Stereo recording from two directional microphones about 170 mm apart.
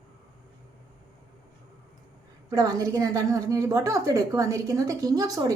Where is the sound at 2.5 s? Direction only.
20° right (ahead or behind).